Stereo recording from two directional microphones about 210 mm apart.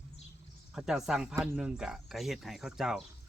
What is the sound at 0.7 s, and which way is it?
Speech, centre (ahead or behind).